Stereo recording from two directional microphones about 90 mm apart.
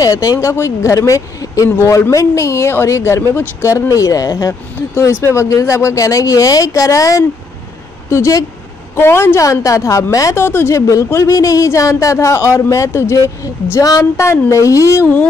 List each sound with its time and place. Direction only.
0.0 s speech: 40° left (ahead or behind)